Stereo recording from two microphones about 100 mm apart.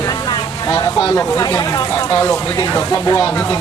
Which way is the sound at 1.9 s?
35° left (ahead or behind).